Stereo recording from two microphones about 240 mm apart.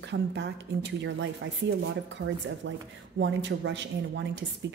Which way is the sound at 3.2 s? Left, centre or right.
Right.